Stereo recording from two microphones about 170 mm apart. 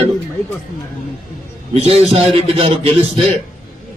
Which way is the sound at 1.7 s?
35° right (ahead or behind).